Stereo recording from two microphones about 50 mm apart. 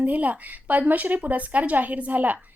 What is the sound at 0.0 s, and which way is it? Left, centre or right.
Speech, right.